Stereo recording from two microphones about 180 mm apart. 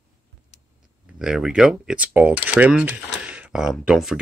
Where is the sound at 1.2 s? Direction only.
5° right (ahead or behind).